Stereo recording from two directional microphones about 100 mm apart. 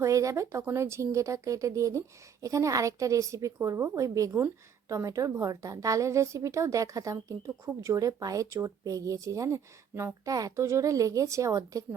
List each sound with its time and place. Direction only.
0.0 s speech: 30° right (ahead or behind)